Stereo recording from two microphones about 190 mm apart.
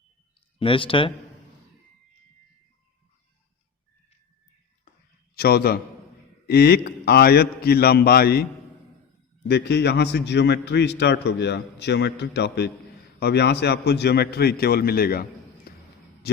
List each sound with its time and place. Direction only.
0.6 s speech: 25° left (ahead or behind)
5.3 s a man's voice: 55° left (ahead or behind)
9.5 s a man's voice: 60° left (ahead or behind)